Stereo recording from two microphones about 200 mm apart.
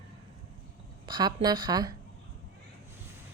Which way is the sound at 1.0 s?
20° right (ahead or behind).